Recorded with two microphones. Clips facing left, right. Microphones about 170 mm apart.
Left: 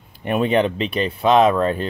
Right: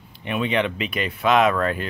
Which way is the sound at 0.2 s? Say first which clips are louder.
Left 5 dB; 45° left (ahead or behind).